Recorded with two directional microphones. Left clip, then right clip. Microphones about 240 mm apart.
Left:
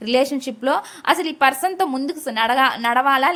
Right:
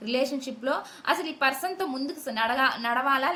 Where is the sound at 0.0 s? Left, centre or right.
Left.